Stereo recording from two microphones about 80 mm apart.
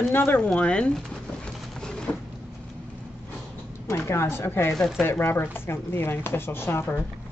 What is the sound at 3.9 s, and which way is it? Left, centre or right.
Speech, left.